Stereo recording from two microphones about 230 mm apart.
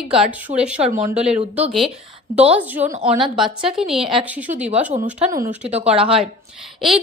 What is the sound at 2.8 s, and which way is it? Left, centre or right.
Speech, right.